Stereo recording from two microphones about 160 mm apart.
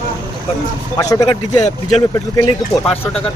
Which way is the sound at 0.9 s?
20° left (ahead or behind).